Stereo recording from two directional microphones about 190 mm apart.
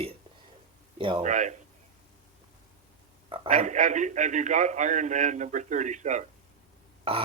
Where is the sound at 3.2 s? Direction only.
30° right (ahead or behind).